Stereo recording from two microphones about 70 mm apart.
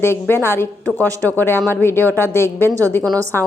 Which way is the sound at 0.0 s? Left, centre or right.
Left.